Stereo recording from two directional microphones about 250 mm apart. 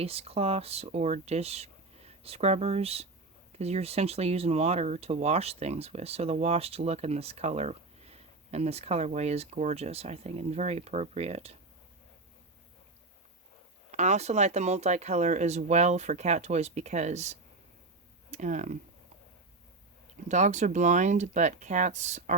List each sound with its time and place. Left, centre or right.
0.0 s speech: right
13.9 s speech: right
20.2 s speech: right